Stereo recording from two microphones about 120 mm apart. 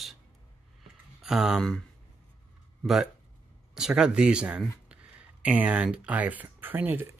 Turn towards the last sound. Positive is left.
turn(degrees=-15)  # may be behind; listen again after turning